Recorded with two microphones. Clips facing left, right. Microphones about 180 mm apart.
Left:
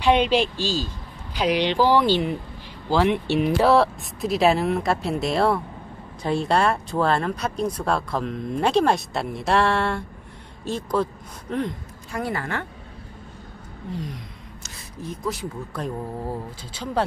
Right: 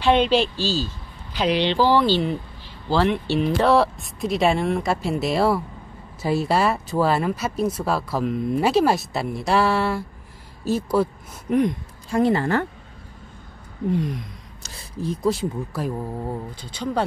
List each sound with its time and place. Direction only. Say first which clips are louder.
0.0 s speech: right 1 dB; 15° left (ahead or behind); by 11.6 s 10° right (ahead or behind)
12.1 s speech: right 9 dB; 25° right (ahead or behind)
14.6 s a sound: right 7 dB; 30° right (ahead or behind)
15.7 s speech: right 2 dB; centre (ahead or behind)